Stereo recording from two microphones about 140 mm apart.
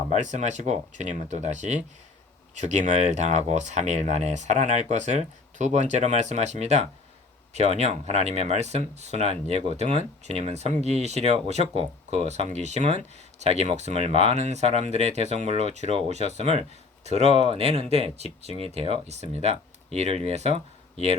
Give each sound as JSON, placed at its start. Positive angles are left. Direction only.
{"t": 0.1, "sound": "speech", "side_deg": -55}